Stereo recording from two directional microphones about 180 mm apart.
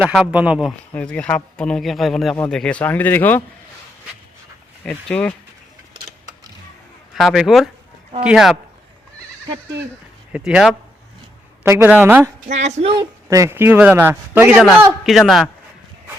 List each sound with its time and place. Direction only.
0.0 s a man's voice: 5° right (ahead or behind)
0.9 s speech: 5° left (ahead or behind)
4.9 s a man's voice: 5° left (ahead or behind)
7.1 s a man's voice: centre (ahead or behind)
10.3 s a man's voice: 5° right (ahead or behind)
12.5 s speech: 40° right (ahead or behind)
13.2 s a man's voice: 15° right (ahead or behind)